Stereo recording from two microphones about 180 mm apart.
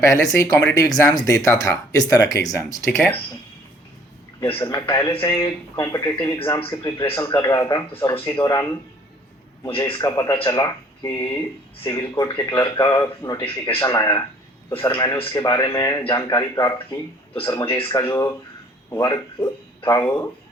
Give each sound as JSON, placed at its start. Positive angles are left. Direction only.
{"t": 0.0, "sound": "speech", "side_deg": 20}
{"t": 4.5, "sound": "speech", "side_deg": 20}
{"t": 9.9, "sound": "speech", "side_deg": 20}
{"t": 13.4, "sound": "speech", "side_deg": 30}
{"t": 13.8, "sound": "speech", "side_deg": 20}
{"t": 17.7, "sound": "speech", "side_deg": 30}
{"t": 18.0, "sound": "speech", "side_deg": 15}